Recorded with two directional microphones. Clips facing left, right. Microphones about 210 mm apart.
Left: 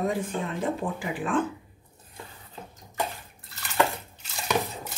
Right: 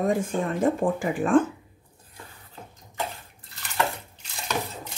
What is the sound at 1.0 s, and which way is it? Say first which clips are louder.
Speech: right 8 dB; 45° right (ahead or behind).